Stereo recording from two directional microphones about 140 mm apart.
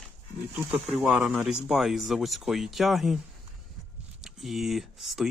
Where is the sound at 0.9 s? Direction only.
5° right (ahead or behind).